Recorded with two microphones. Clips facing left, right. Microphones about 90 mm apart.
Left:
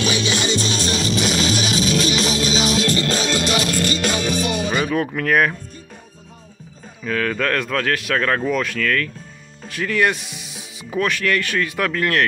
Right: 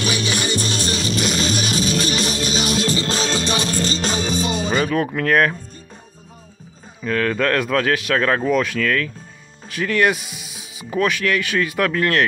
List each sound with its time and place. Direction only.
0.0 s music: 45° right (ahead or behind)
2.9 s music: 25° right (ahead or behind)
4.7 s speech: 5° left (ahead or behind)
7.1 s speech: centre (ahead or behind)